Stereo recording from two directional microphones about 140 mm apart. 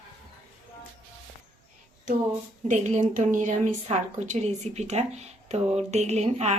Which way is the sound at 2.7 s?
60° right (ahead or behind).